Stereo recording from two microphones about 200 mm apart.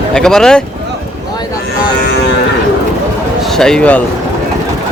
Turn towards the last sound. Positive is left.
turn(degrees=5)  # may be behind; listen again after turning